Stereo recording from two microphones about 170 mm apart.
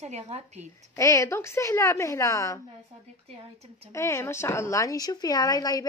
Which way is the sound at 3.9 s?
15° left (ahead or behind).